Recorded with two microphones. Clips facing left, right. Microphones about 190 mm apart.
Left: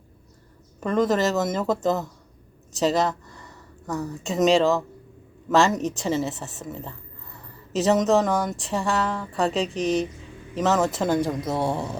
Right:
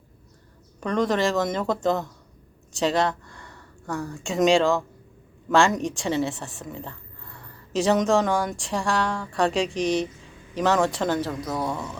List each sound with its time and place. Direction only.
0.8 s a woman's voice: 5° left (ahead or behind)
11.3 s speech: 25° left (ahead or behind)